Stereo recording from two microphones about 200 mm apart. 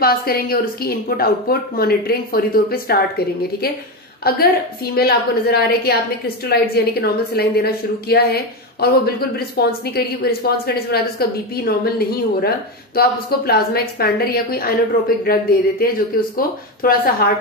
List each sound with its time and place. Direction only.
0.0 s a woman's voice: 50° left (ahead or behind)
16.3 s a woman's voice: 50° left (ahead or behind)